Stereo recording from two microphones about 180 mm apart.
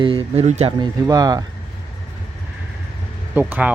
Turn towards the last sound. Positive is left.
turn(degrees=-10)  # may be behind; listen again after turning